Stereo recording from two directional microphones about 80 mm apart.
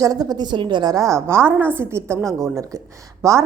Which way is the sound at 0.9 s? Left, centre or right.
Right.